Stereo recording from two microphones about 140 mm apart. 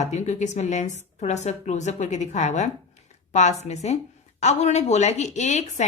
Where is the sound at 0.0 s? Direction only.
55° left (ahead or behind).